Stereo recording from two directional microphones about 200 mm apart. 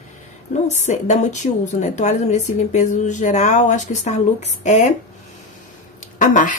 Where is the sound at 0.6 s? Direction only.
35° left (ahead or behind).